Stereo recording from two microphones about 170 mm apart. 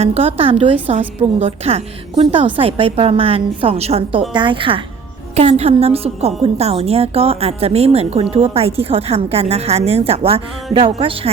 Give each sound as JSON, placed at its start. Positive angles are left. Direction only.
{"t": 0.0, "sound": "a woman's voice", "side_deg": -35}